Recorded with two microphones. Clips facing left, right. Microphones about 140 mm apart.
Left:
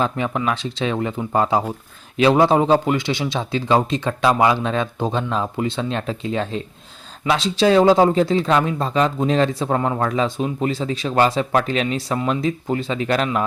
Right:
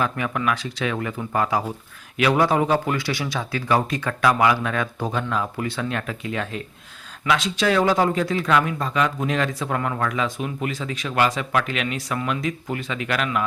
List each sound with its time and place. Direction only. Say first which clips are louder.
0.0 s speech: left 3 dB; 25° left (ahead or behind)